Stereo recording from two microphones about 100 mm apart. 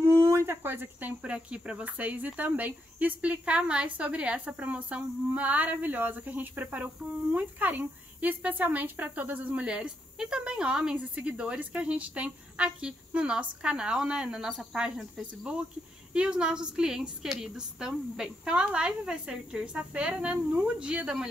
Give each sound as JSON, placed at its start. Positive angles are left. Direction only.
{"t": 0.0, "sound": "speech", "side_deg": -25}